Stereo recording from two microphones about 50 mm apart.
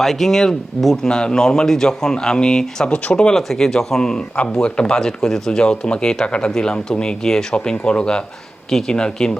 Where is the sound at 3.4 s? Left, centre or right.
Centre.